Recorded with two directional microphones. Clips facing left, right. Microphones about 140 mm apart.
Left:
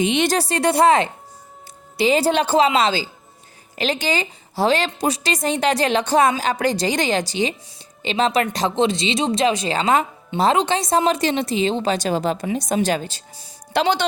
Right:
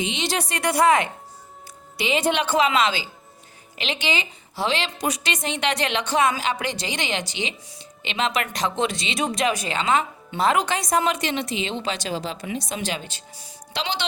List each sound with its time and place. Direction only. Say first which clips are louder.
0.0 s speech: left 8 dB; 55° left (ahead or behind)
0.3 s speech: left 4 dB; 30° left (ahead or behind)
9.7 s speech: left 3 dB; 40° left (ahead or behind)
13.7 s speech: left 9 dB; 45° left (ahead or behind)